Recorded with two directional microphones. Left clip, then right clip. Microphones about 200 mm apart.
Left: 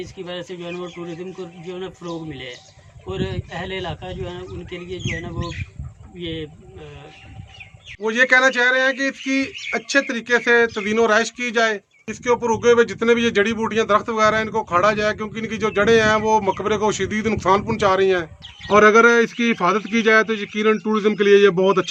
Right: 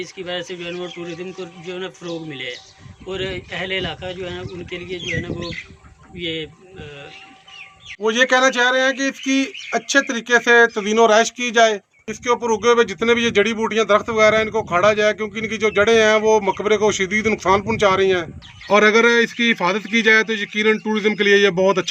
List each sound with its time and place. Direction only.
0.0 s speech: 20° left (ahead or behind)
3.1 s speech: 25° left (ahead or behind)
6.1 s speech: 20° left (ahead or behind)
8.0 s speech: 5° right (ahead or behind)